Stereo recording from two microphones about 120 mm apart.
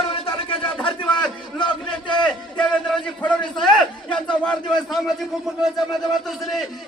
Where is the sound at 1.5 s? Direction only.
40° left (ahead or behind).